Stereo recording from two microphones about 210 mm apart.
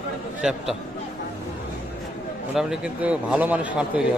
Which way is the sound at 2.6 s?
5° right (ahead or behind).